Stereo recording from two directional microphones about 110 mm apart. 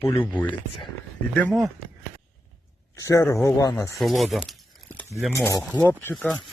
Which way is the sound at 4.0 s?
Centre (ahead or behind).